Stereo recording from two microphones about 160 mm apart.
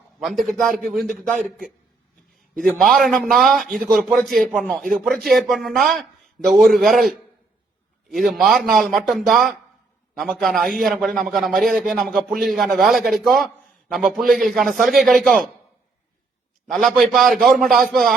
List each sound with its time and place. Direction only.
0.2 s a man's voice: centre (ahead or behind)
8.1 s a man's voice: centre (ahead or behind)
16.7 s a man's voice: 5° left (ahead or behind)